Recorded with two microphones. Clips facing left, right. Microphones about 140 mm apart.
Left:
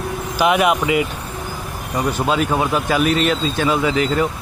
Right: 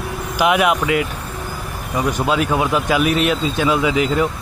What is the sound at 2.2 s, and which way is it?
Speech, centre (ahead or behind).